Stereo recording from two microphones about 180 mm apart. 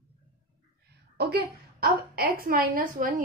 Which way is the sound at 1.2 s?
60° right (ahead or behind).